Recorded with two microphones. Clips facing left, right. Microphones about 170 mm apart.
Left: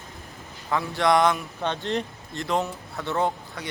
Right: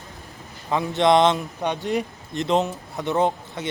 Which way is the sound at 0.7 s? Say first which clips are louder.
Right 4 dB; 20° right (ahead or behind).